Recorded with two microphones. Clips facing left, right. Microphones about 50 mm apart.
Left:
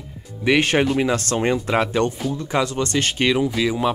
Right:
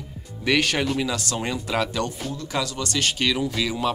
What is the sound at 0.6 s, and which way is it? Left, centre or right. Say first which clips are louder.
Speech: left 5 dB; left.